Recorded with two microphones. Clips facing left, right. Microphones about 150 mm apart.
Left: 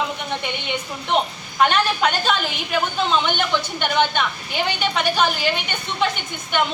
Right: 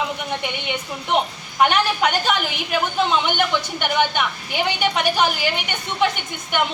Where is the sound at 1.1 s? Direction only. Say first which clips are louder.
Even; 15° right (ahead or behind).